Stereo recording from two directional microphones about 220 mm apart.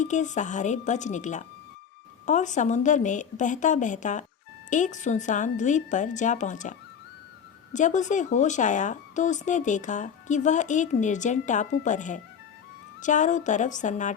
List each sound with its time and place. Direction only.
0.0 s speech: 35° left (ahead or behind)